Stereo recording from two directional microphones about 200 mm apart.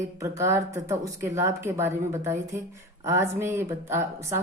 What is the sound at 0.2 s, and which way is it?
A woman's voice, 15° right (ahead or behind).